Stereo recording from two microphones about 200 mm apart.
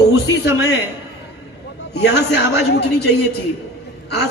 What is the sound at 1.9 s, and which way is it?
Speech, 55° left (ahead or behind).